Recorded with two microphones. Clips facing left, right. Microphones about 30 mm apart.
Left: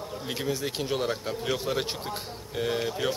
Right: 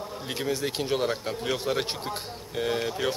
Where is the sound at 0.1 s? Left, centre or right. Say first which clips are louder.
Right 1 dB; centre.